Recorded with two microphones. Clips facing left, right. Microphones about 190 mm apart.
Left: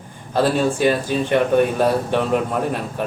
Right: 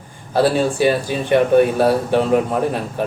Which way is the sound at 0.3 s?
10° right (ahead or behind).